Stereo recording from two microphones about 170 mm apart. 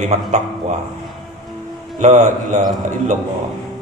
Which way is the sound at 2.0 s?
45° right (ahead or behind).